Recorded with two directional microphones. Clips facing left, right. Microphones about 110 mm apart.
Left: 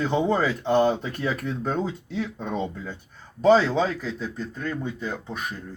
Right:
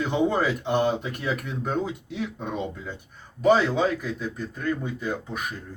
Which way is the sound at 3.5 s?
15° right (ahead or behind).